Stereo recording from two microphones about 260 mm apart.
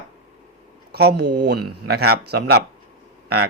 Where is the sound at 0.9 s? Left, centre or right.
Right.